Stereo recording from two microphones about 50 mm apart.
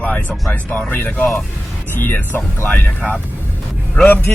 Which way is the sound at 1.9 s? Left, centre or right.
Left.